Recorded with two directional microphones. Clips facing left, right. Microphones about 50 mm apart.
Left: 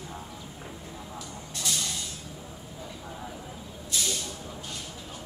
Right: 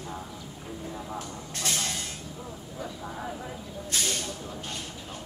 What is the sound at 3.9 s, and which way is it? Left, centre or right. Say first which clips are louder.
Vehicle: right 1 dB; right.